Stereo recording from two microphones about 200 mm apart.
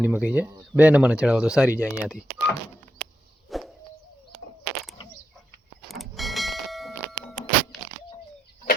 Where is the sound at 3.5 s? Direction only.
Centre (ahead or behind).